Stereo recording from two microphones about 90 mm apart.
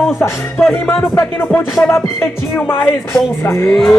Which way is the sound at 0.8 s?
25° left (ahead or behind).